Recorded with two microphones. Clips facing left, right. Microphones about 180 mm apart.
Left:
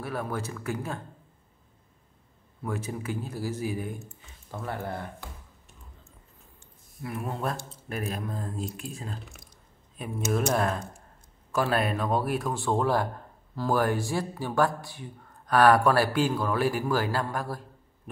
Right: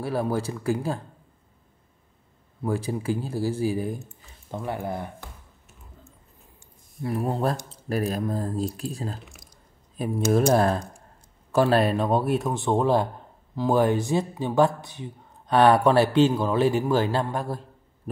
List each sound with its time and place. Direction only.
0.0 s speech: 30° right (ahead or behind)
2.6 s speech: 30° right (ahead or behind)
4.5 s speech: 15° right (ahead or behind)
7.0 s speech: 35° right (ahead or behind)
18.1 s heart sounds: 35° right (ahead or behind)